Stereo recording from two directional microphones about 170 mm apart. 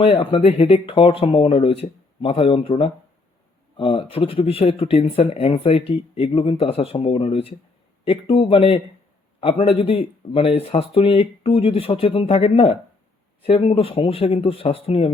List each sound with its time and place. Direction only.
0.0 s speech: 30° left (ahead or behind)